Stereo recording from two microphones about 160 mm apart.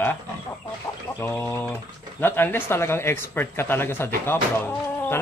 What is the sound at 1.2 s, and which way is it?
Speech, 15° left (ahead or behind).